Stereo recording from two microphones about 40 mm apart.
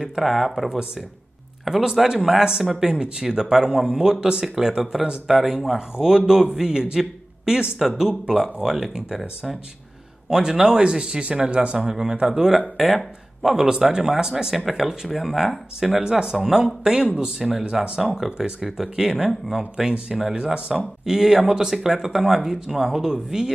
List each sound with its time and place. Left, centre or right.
0.0 s speech: centre
10.3 s speech: centre
16.0 s speech: centre
16.9 s speech: right
17.4 s speech: centre